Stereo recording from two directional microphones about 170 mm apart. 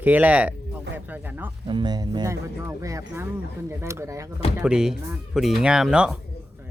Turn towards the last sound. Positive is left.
turn(degrees=-5)  # may be behind; listen again after turning